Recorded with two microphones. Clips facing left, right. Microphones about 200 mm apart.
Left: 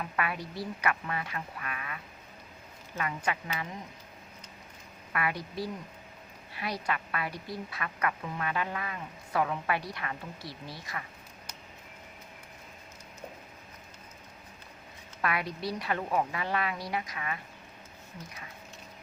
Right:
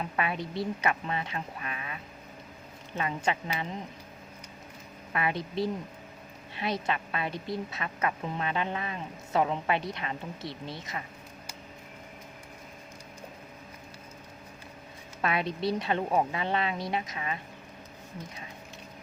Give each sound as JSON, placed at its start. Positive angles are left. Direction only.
{"t": 0.0, "sound": "a woman's voice", "side_deg": -25}
{"t": 3.0, "sound": "a woman's voice", "side_deg": -25}
{"t": 5.1, "sound": "a woman's voice", "side_deg": -25}
{"t": 15.2, "sound": "a woman's voice", "side_deg": -25}